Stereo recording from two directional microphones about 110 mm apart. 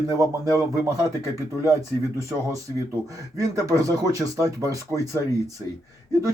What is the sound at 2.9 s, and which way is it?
Speech, 30° right (ahead or behind).